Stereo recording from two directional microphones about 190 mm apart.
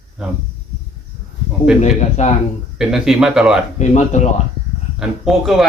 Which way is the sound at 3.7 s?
40° left (ahead or behind).